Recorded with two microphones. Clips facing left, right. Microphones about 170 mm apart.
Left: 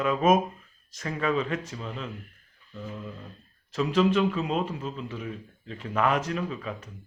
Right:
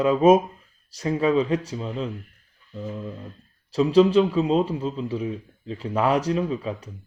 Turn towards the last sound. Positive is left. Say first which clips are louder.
# right 7 dB
turn(degrees=-30)  # may be behind; listen again after turning